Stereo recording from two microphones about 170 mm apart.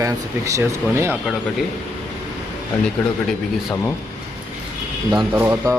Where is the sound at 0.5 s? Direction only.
15° right (ahead or behind).